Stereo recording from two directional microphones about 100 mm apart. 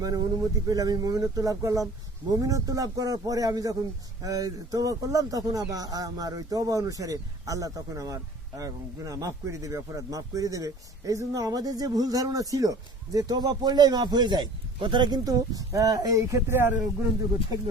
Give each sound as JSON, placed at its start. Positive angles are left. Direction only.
{"t": 0.0, "sound": "speech", "side_deg": -35}